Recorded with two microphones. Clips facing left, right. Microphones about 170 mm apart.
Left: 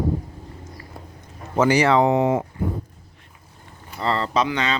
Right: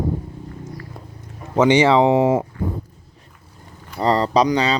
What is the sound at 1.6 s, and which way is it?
Speech, 20° right (ahead or behind).